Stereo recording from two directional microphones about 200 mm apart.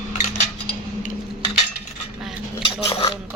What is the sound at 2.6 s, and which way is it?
Speech, 20° left (ahead or behind).